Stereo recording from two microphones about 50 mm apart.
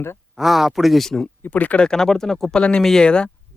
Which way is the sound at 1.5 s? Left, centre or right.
Left.